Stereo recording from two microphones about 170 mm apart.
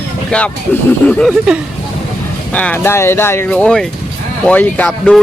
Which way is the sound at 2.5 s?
10° left (ahead or behind).